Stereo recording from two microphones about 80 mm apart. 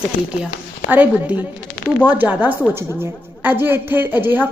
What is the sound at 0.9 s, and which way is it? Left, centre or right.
A woman's voice, right.